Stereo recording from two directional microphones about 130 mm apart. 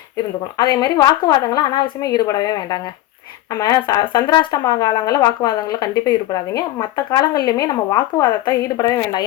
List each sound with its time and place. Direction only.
0.5 s a woman's voice: 30° left (ahead or behind)